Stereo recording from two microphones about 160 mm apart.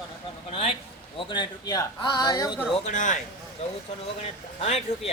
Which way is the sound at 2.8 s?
50° left (ahead or behind).